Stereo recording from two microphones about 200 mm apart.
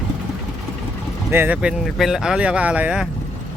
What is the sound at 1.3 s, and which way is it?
Speech, 10° right (ahead or behind).